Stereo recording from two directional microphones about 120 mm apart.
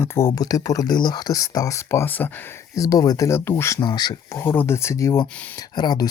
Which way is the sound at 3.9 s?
35° left (ahead or behind).